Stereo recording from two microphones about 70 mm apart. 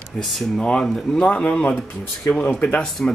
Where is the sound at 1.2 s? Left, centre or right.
Centre.